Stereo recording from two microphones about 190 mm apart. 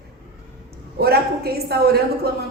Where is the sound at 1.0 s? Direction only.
55° right (ahead or behind).